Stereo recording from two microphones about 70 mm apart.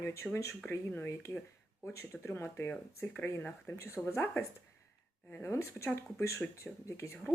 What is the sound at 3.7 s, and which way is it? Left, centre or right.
Speech, left.